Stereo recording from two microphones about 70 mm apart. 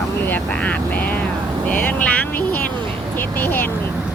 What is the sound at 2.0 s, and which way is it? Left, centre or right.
Vehicle, left.